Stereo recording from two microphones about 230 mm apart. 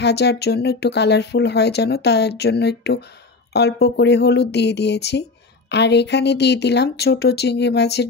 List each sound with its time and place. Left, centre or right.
0.0 s speech: left